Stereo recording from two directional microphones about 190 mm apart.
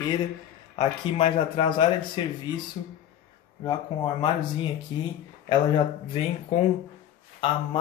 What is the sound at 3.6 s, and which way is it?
Speech, 25° left (ahead or behind).